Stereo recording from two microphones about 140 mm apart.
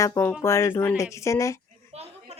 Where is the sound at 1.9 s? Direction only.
50° right (ahead or behind).